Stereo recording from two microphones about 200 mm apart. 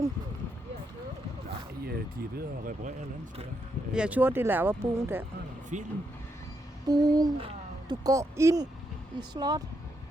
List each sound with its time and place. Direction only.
1.8 s speech: 50° right (ahead or behind)
3.9 s speech: 5° right (ahead or behind)
5.7 s speech: 35° right (ahead or behind)
6.8 s speech: 20° right (ahead or behind)